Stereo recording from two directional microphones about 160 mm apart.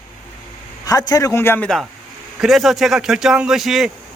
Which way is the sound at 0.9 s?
20° left (ahead or behind).